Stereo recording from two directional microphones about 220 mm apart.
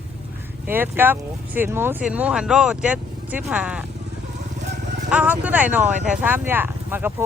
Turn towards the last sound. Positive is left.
turn(degrees=-10)  # may be behind; listen again after turning